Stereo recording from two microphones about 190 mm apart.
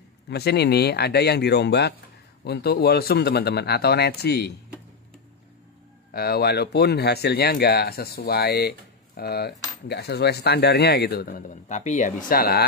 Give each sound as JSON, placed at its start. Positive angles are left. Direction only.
{"t": 0.3, "sound": "speech", "side_deg": 60}
{"t": 6.1, "sound": "speech", "side_deg": 55}